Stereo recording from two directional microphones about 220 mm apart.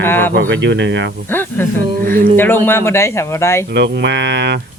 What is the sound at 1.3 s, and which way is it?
Speech, 10° left (ahead or behind).